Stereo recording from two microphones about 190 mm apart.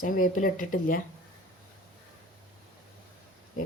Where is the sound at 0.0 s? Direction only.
45° left (ahead or behind).